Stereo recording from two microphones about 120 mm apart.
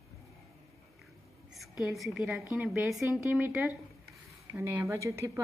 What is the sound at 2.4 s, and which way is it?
Speech, 20° right (ahead or behind).